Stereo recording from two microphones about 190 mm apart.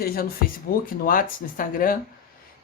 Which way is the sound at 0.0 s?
50° left (ahead or behind).